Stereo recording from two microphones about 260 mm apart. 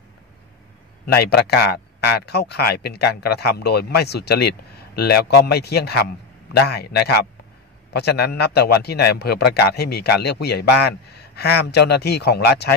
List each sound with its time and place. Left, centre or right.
1.0 s speech: left